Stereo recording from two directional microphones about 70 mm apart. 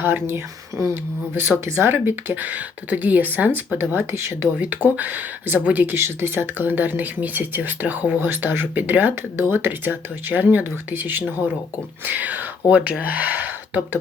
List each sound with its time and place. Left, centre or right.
0.0 s speech: right
4.6 s speech: right